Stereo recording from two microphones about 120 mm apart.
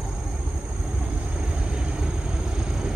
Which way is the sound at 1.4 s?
10° right (ahead or behind).